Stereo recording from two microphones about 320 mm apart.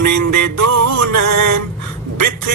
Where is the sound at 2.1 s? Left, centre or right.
Right.